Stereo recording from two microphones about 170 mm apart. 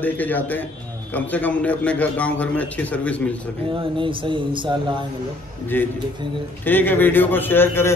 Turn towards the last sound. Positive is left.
turn(degrees=15)  # may be behind; listen again after turning